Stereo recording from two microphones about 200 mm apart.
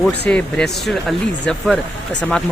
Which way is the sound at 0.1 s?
5° left (ahead or behind).